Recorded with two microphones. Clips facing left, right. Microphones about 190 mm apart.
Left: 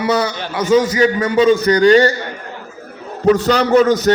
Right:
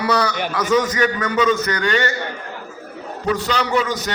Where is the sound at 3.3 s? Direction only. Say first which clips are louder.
Left 6 dB; 45° left (ahead or behind).